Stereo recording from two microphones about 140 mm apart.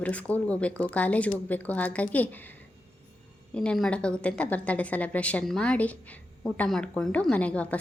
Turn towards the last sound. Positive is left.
turn(degrees=10)  # may be behind; listen again after turning